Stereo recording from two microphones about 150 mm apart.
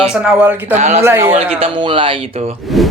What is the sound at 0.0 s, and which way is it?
Speech, 5° right (ahead or behind).